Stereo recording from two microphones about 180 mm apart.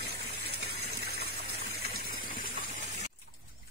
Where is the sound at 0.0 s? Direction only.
60° right (ahead or behind).